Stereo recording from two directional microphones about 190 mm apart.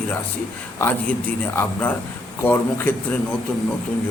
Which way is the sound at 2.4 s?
10° left (ahead or behind).